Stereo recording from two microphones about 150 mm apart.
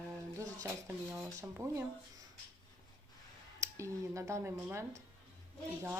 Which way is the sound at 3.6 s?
20° right (ahead or behind).